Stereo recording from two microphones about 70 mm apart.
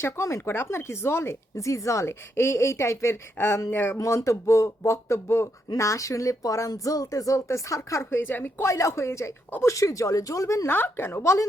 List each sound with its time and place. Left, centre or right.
0.0 s speech: left
0.4 s speech: left
3.9 s speech: left
8.3 s speech: left
8.6 s speech: left
10.7 s speech: left